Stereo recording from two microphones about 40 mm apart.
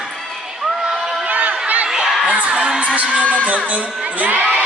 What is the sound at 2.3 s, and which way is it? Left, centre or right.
Music, right.